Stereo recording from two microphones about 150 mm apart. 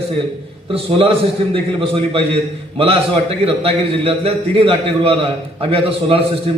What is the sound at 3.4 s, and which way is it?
A man's voice, 40° right (ahead or behind).